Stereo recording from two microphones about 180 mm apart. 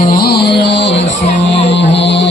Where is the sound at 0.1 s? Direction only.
60° left (ahead or behind).